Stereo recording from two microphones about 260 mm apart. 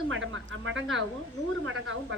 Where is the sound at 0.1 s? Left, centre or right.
Right.